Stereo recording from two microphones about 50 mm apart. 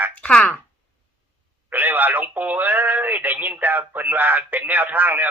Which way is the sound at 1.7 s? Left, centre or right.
Right.